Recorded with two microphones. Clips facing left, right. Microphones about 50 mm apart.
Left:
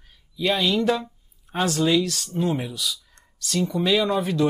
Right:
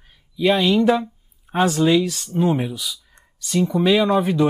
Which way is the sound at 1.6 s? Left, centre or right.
Centre.